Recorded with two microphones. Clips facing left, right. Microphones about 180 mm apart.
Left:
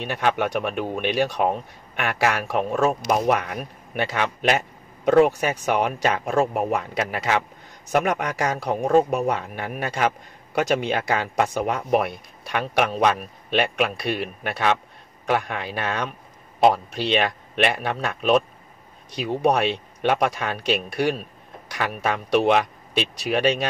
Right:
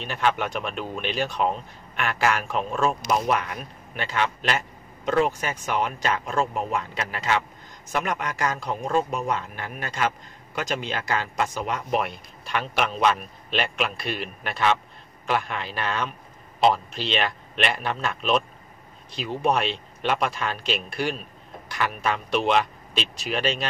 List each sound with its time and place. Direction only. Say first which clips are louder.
0.0 s speech: left 2 dB; 60° left (ahead or behind)